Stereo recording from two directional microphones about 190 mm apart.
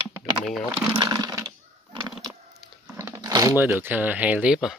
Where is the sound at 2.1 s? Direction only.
Centre (ahead or behind).